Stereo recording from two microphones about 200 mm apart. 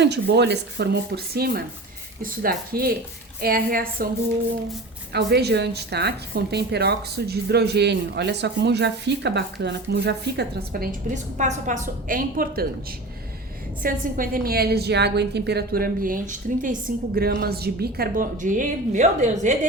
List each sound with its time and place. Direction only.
0.0 s a woman's voice: 60° right (ahead or behind)
5.1 s a woman's voice: 55° right (ahead or behind)
13.8 s a woman's voice: 45° right (ahead or behind)
17.2 s a woman's voice: 50° right (ahead or behind)